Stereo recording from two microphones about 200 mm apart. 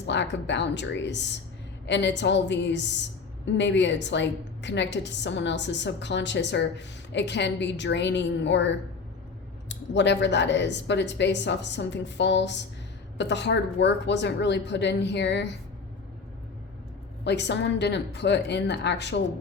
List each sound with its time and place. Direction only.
0.1 s a woman's voice: 60° left (ahead or behind)
17.2 s a woman's voice: 60° left (ahead or behind)